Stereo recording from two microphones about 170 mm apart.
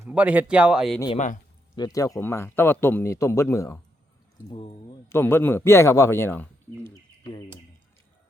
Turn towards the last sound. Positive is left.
turn(degrees=10)  # may be behind; listen again after turning